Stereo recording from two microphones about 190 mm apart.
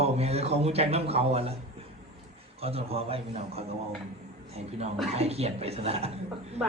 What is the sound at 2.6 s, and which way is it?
A woman's voice, 30° right (ahead or behind).